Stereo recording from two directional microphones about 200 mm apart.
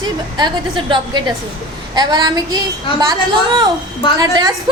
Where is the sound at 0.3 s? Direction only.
20° right (ahead or behind).